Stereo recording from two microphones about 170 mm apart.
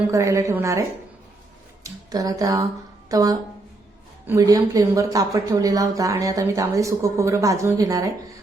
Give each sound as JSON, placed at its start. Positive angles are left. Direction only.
{"t": 0.1, "sound": "a woman's voice", "side_deg": -15}